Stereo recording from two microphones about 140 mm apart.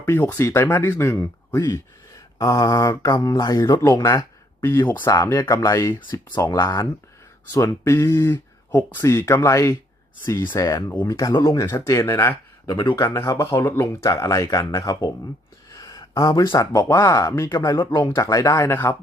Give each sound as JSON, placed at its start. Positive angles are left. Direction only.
{"t": 0.0, "sound": "speech", "side_deg": 20}
{"t": 12.6, "sound": "speech", "side_deg": 35}
{"t": 13.1, "sound": "speech", "side_deg": 20}